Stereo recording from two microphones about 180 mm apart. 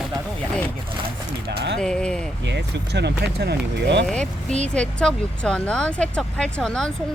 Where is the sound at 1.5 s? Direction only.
70° right (ahead or behind).